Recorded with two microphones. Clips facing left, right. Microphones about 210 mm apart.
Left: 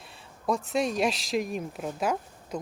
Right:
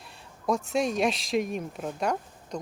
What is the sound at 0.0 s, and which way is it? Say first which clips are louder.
Speech: right 1 dB; centre (ahead or behind).